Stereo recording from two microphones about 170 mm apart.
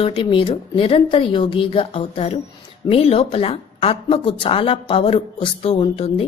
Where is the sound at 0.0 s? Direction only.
30° left (ahead or behind).